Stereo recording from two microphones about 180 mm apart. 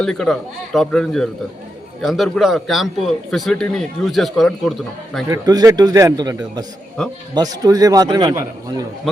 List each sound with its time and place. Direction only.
0.0 s a man's voice: 5° left (ahead or behind)
5.3 s a man's voice: 20° right (ahead or behind)